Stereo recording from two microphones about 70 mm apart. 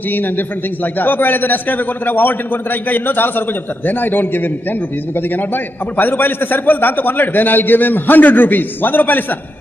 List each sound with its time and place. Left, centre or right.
0.1 s a man's voice: left